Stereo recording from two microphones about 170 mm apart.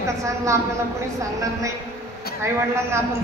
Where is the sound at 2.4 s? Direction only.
15° right (ahead or behind).